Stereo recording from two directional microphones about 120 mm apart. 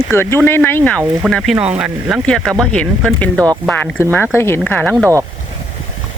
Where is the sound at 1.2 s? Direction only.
Centre (ahead or behind).